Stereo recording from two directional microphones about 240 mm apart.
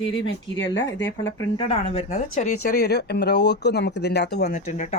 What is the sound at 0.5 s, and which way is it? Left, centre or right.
Speech, left.